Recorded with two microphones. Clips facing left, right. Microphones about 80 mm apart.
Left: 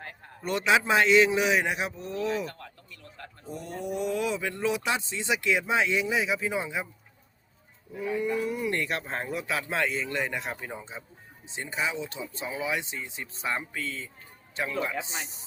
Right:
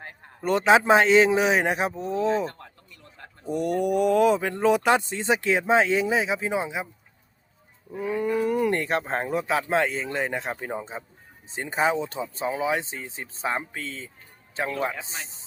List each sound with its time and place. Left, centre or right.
0.4 s speech: right
3.4 s speech: right
7.9 s speech: right
8.7 s speech: right